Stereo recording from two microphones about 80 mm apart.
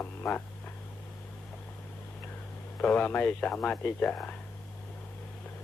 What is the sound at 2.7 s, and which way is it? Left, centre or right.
Speech, centre.